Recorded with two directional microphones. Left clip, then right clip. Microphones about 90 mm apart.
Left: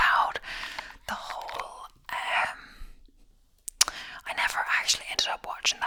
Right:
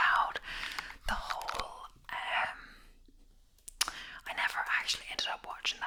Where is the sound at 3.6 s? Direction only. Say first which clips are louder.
Left 8 dB; 30° left (ahead or behind).